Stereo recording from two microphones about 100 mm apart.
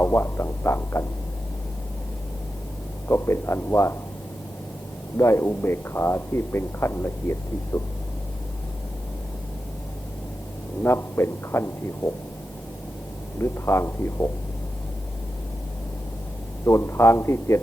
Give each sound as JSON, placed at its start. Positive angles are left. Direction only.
{"t": 0.0, "sound": "speech", "side_deg": 25}
{"t": 3.1, "sound": "speech", "side_deg": 25}
{"t": 5.1, "sound": "speech", "side_deg": 25}
{"t": 10.8, "sound": "speech", "side_deg": 25}
{"t": 13.4, "sound": "speech", "side_deg": 25}
{"t": 16.6, "sound": "speech", "side_deg": 25}